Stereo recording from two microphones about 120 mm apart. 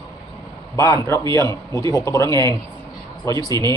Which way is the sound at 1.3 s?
25° left (ahead or behind).